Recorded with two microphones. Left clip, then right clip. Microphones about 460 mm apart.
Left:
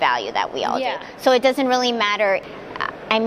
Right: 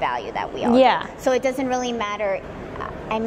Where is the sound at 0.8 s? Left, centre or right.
Right.